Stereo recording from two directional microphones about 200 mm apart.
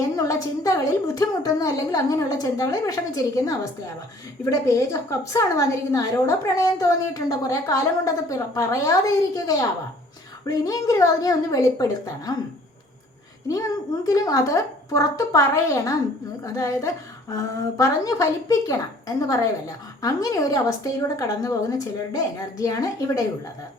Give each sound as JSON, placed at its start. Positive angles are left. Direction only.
{"t": 0.2, "sound": "a woman's voice", "side_deg": 15}
{"t": 13.5, "sound": "a woman's voice", "side_deg": 15}